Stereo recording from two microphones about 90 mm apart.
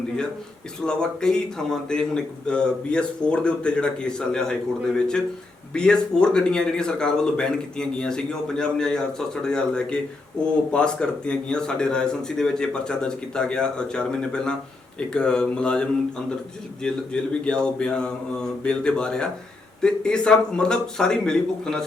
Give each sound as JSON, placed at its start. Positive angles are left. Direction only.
{"t": 0.9, "sound": "a man's voice", "side_deg": 10}
{"t": 5.7, "sound": "a man's voice", "side_deg": 10}